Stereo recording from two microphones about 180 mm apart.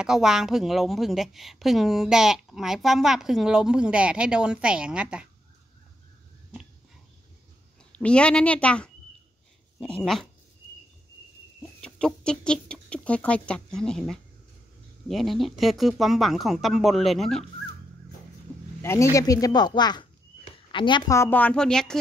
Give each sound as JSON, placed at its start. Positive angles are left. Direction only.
{"t": 0.0, "sound": "a woman's voice", "side_deg": -5}
{"t": 8.0, "sound": "a woman's voice", "side_deg": 5}
{"t": 11.8, "sound": "a woman's voice", "side_deg": 5}
{"t": 18.8, "sound": "speech", "side_deg": 15}
{"t": 21.2, "sound": "a woman's voice", "side_deg": 10}